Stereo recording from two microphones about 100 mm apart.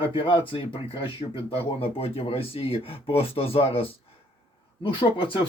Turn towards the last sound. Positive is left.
turn(degrees=60)  # may be behind; listen again after turning